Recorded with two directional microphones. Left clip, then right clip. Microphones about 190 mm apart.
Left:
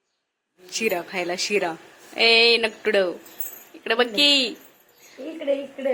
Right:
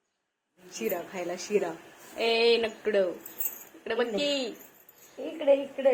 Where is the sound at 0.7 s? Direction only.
20° left (ahead or behind).